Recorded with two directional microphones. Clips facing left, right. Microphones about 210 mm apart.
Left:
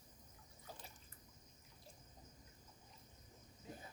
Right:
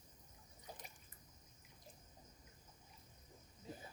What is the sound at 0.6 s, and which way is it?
Drip, 15° right (ahead or behind).